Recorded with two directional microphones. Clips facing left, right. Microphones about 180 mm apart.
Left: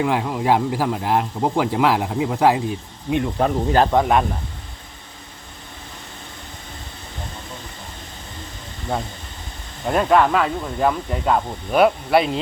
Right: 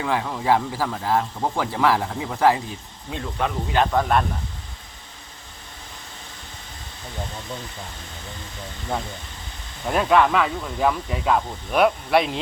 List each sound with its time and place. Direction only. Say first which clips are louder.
0.0 s speech: left 4 dB; 15° left (ahead or behind)
3.3 s speech: left 3 dB; 40° left (ahead or behind)
3.9 s speech: left 3 dB; 10° left (ahead or behind)
9.8 s speech: left 2 dB; centre (ahead or behind)